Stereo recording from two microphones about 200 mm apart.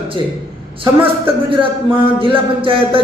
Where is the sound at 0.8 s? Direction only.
25° right (ahead or behind).